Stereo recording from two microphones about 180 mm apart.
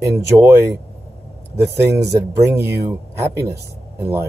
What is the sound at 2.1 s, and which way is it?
Speech, 15° right (ahead or behind).